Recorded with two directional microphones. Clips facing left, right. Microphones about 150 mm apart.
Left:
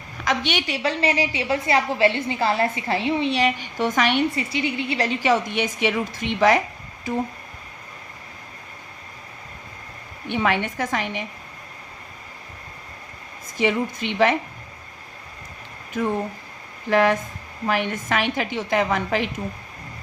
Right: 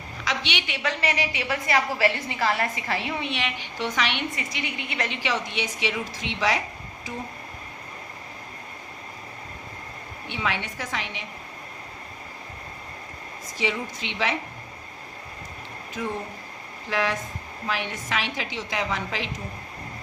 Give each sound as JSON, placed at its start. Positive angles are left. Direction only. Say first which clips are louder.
{"t": 0.3, "sound": "a woman's voice", "louder": "left 6 dB", "side_deg": 45}
{"t": 0.8, "sound": "a woman's voice", "louder": "left 4 dB", "side_deg": 30}
{"t": 4.4, "sound": "a woman's voice", "louder": "left 8 dB", "side_deg": 30}
{"t": 10.2, "sound": "a woman's voice", "louder": "left 7 dB", "side_deg": 50}
{"t": 13.6, "sound": "a woman's voice", "louder": "left 7 dB", "side_deg": 55}
{"t": 16.0, "sound": "a woman's voice", "louder": "left 7 dB", "side_deg": 55}